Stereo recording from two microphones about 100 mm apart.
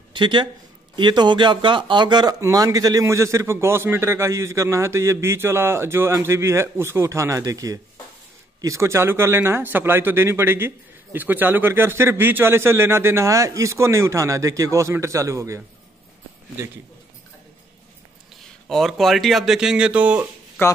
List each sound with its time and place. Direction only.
0.1 s speech: 50° right (ahead or behind)
2.4 s a man's voice: 35° right (ahead or behind)
18.7 s speech: 5° left (ahead or behind); by 20.2 s 15° right (ahead or behind)
20.6 s speech: 25° left (ahead or behind)